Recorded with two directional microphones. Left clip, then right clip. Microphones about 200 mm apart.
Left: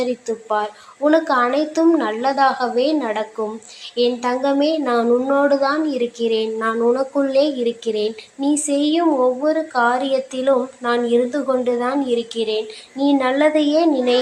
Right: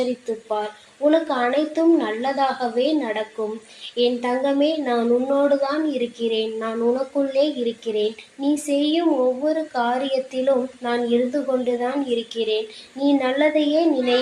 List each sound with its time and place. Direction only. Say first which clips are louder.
0.0 s a woman's voice: left 2 dB; 20° left (ahead or behind)